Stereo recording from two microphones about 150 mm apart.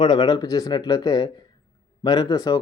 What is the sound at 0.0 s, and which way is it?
Speech, 30° left (ahead or behind).